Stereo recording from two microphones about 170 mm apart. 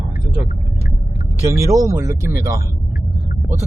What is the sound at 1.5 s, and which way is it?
Speech, 20° right (ahead or behind).